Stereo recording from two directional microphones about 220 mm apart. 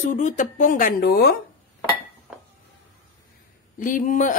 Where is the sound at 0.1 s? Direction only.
35° left (ahead or behind).